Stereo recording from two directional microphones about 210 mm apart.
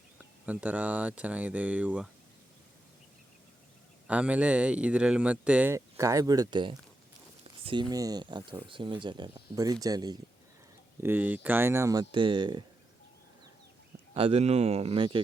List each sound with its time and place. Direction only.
0.4 s speech: 5° right (ahead or behind)
4.0 s speech: 5° right (ahead or behind); by 12.6 s 20° right (ahead or behind)
14.1 s speech: 30° right (ahead or behind)